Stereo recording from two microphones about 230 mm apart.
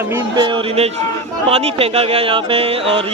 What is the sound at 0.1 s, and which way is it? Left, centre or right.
Speech, centre.